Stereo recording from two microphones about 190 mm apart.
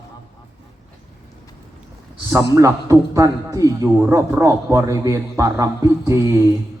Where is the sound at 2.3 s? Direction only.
15° right (ahead or behind).